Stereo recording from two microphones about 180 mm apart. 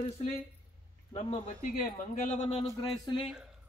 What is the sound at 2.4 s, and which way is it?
Speech, 30° left (ahead or behind).